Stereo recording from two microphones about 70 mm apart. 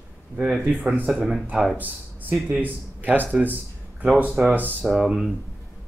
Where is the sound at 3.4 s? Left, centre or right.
Right.